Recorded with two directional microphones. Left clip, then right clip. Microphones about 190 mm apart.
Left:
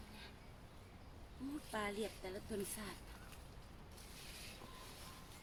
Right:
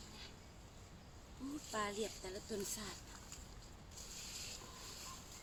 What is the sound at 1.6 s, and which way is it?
Speech, centre (ahead or behind).